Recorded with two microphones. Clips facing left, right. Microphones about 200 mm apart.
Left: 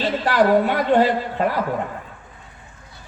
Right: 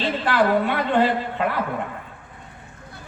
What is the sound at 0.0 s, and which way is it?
A woman's voice, 40° left (ahead or behind).